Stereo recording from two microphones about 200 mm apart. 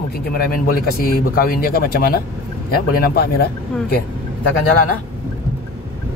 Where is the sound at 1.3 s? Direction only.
45° left (ahead or behind).